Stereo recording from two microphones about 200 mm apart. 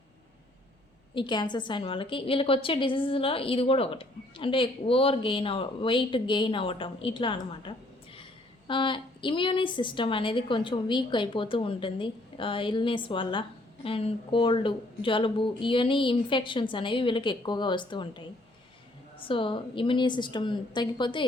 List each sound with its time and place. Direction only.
1.1 s a woman's voice: 25° left (ahead or behind)
19.2 s a woman's voice: 25° left (ahead or behind)